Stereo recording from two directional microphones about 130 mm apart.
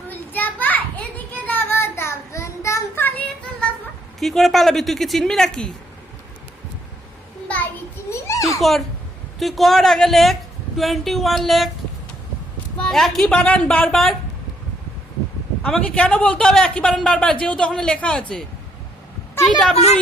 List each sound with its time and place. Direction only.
0.1 s a sound: 15° left (ahead or behind)
4.2 s a woman's voice: centre (ahead or behind)
7.4 s a sound: 10° left (ahead or behind)
8.1 s children playing: 25° left (ahead or behind)
8.5 s a woman's voice: centre (ahead or behind)
12.7 s a woman's voice: 5° left (ahead or behind)
15.6 s speech: 10° left (ahead or behind)
19.5 s a woman's voice: 5° left (ahead or behind)
19.7 s speech: 55° left (ahead or behind)